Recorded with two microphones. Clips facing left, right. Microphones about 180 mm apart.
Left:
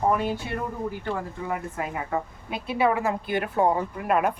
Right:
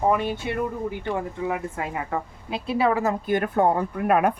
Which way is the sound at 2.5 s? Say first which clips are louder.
Right 2 dB; 30° right (ahead or behind).